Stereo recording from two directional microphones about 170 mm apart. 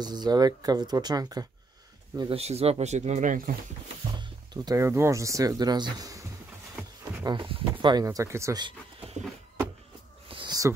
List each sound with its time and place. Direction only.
0.0 s speech: 25° right (ahead or behind)
2.1 s speech: 35° right (ahead or behind); by 3.5 s 55° right (ahead or behind)
4.2 s speech: 20° right (ahead or behind)
7.2 s speech: 30° right (ahead or behind)
10.2 s a sound: 30° right (ahead or behind)